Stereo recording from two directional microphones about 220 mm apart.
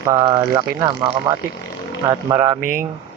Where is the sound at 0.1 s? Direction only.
20° right (ahead or behind).